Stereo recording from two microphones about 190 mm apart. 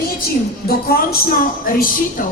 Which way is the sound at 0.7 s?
55° left (ahead or behind).